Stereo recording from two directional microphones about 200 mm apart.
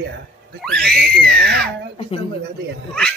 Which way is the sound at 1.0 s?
50° right (ahead or behind).